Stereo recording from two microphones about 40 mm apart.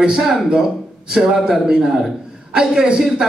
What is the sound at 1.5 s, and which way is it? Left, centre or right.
Speech, centre.